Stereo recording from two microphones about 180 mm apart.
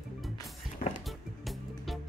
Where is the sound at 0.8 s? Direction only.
50° left (ahead or behind).